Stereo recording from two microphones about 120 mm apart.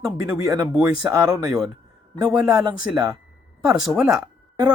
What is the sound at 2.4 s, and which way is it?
Speech, 30° right (ahead or behind).